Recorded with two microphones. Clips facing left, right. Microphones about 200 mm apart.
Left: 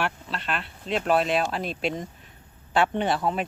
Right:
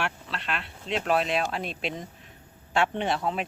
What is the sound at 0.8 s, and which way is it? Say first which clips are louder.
Speech: left 2 dB; 45° left (ahead or behind).